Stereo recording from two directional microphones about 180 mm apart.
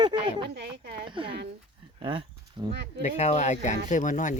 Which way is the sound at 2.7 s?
70° right (ahead or behind).